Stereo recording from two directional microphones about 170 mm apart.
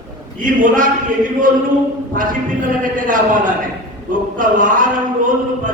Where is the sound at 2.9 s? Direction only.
50° right (ahead or behind).